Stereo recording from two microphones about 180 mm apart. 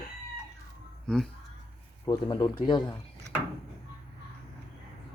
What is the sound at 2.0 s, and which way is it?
Speech, 20° left (ahead or behind).